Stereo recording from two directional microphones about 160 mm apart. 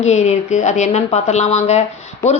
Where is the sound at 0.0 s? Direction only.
45° left (ahead or behind).